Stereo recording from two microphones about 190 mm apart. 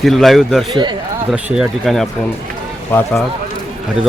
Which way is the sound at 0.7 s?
25° right (ahead or behind).